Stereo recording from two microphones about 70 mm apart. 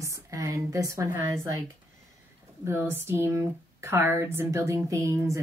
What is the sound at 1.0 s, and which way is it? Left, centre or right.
Speech, right.